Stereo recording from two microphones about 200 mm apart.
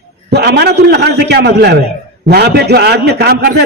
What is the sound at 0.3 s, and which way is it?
A man's voice, 55° right (ahead or behind).